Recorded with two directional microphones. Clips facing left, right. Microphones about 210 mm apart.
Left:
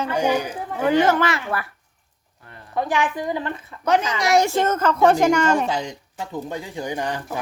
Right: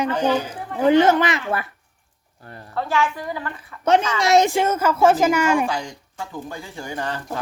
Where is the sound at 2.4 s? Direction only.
35° right (ahead or behind).